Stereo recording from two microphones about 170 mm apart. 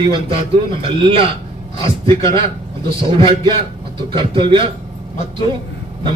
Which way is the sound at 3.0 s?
30° right (ahead or behind).